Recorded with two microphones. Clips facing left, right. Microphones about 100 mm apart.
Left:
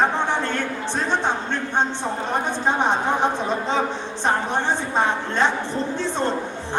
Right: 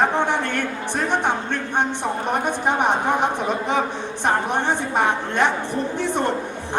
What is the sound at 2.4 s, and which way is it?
A woman's voice, 15° right (ahead or behind).